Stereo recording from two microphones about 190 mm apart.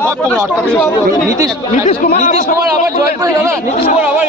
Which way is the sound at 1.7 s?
40° left (ahead or behind).